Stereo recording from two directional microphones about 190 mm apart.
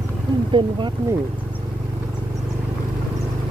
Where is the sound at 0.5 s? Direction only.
25° right (ahead or behind).